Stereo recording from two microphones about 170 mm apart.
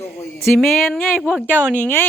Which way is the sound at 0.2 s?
15° left (ahead or behind).